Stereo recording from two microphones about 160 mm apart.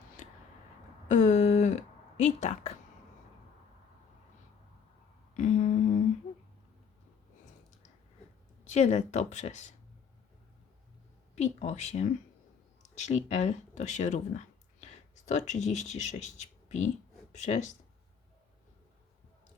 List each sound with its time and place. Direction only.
1.0 s a sound: 50° left (ahead or behind)
5.3 s humming: 50° left (ahead or behind)
8.6 s speech: 45° left (ahead or behind)
11.3 s speech: 45° left (ahead or behind)